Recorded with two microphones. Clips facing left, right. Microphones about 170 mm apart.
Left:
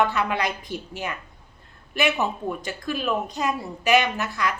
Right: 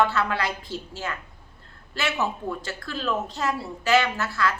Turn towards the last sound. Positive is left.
turn(degrees=15)  # may be behind; listen again after turning